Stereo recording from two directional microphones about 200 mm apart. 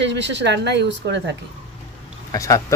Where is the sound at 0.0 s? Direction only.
60° right (ahead or behind).